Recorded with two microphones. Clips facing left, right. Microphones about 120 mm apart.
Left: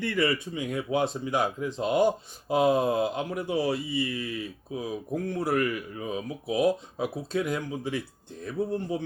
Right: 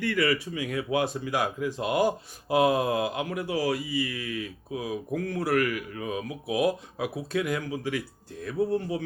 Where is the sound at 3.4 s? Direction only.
20° left (ahead or behind).